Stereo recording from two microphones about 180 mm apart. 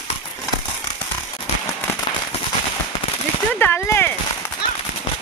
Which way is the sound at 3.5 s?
15° left (ahead or behind).